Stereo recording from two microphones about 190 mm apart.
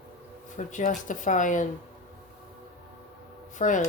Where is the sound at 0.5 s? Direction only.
40° left (ahead or behind).